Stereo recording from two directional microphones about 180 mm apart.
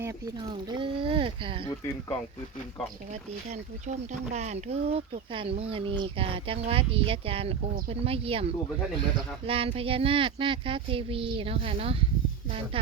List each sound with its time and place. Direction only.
0.5 s speech: 25° right (ahead or behind)
3.5 s speech: 40° right (ahead or behind)